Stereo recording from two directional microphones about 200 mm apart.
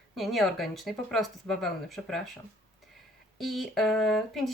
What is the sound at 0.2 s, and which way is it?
Speech, centre (ahead or behind).